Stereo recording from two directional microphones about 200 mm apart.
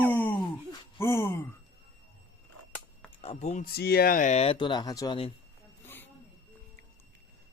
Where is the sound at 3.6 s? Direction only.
50° left (ahead or behind); by 5.3 s 20° left (ahead or behind).